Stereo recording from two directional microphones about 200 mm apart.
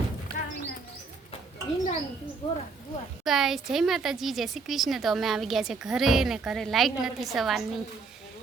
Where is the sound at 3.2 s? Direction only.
Centre (ahead or behind).